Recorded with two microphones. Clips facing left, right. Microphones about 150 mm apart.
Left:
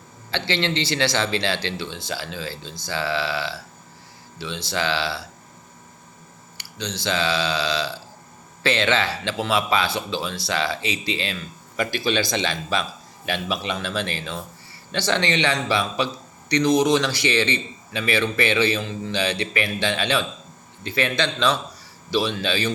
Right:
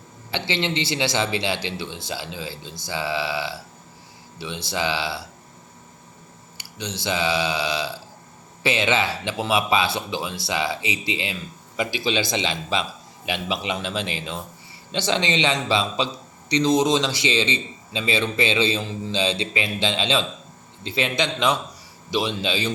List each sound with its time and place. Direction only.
0.3 s speech: 15° right (ahead or behind)
6.6 s a sound: 20° right (ahead or behind)
7.0 s speech: 20° right (ahead or behind)